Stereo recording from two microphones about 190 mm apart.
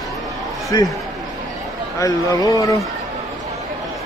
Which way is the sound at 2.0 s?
20° left (ahead or behind).